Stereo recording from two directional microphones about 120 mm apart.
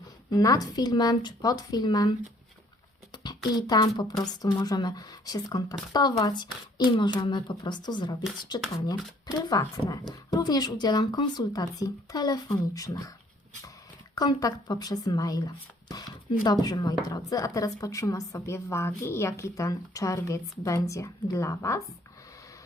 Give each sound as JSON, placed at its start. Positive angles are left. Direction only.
{"t": 0.3, "sound": "speech", "side_deg": 30}
{"t": 14.2, "sound": "speech", "side_deg": 30}